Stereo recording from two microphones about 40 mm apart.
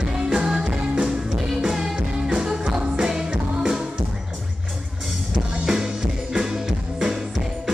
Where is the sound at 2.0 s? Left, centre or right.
Right.